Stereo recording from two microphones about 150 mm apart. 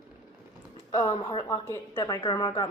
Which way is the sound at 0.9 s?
25° left (ahead or behind).